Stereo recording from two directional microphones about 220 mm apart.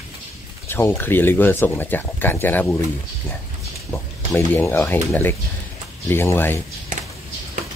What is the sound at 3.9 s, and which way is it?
Speech, 10° left (ahead or behind).